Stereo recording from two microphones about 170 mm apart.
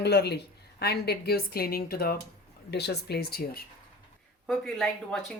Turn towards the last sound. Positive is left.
turn(degrees=0)  # may be behind; listen again after turning